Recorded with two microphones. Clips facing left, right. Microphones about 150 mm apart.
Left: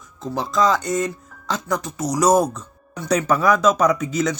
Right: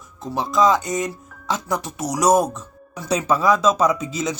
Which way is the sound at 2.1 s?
Centre (ahead or behind).